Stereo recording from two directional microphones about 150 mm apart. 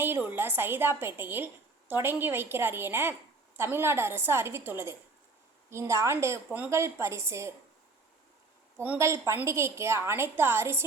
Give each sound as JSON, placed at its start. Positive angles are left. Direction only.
{"t": 0.0, "sound": "a woman's voice", "side_deg": -10}
{"t": 8.8, "sound": "a woman's voice", "side_deg": -15}